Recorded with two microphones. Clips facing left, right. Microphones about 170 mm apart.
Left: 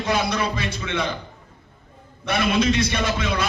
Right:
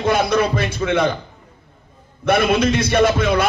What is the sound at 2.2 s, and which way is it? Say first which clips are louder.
A man's voice: right 5 dB; 55° right (ahead or behind).